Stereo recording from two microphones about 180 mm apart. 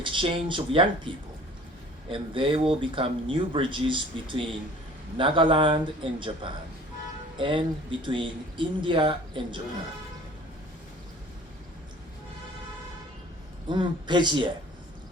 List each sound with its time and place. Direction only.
0.0 s speech: 30° right (ahead or behind)
13.7 s speech: 25° right (ahead or behind)